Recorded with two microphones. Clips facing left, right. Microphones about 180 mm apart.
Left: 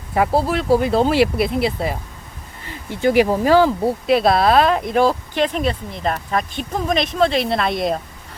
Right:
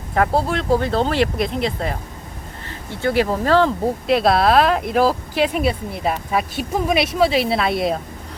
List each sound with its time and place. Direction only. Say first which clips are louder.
0.1 s speech: left 1 dB; 5° left (ahead or behind)